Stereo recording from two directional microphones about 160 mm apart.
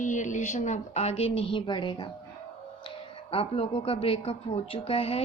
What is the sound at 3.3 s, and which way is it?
A woman's voice, 35° left (ahead or behind).